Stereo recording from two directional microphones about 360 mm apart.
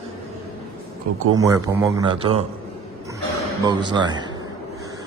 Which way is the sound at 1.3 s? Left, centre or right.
Centre.